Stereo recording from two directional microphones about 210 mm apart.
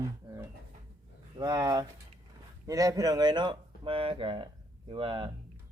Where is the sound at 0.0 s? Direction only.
15° right (ahead or behind).